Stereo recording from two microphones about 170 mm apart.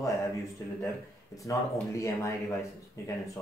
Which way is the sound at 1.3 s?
20° left (ahead or behind).